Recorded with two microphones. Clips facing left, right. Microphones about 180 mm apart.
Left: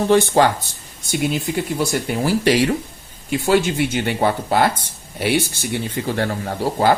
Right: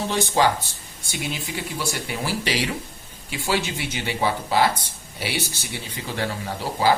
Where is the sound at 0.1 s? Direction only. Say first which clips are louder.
Left 6 dB; 55° left (ahead or behind).